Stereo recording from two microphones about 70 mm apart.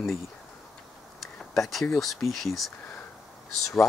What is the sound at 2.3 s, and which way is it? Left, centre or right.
Speech, centre.